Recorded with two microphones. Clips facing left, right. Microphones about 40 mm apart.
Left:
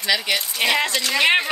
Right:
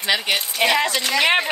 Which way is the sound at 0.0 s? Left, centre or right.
Right.